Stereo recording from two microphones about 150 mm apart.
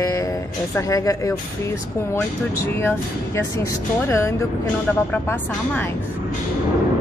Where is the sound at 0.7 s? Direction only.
20° left (ahead or behind).